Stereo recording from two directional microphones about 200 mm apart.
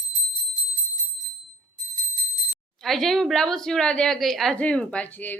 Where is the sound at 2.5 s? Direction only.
Centre (ahead or behind).